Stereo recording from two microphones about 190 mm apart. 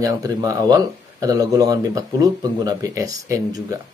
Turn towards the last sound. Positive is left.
turn(degrees=-15)  # may be behind; listen again after turning